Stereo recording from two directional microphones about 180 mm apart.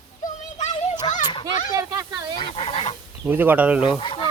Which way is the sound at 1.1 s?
40° left (ahead or behind).